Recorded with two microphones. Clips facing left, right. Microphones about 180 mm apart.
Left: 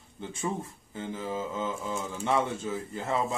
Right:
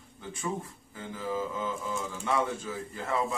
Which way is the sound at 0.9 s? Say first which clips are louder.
Even; 25° left (ahead or behind).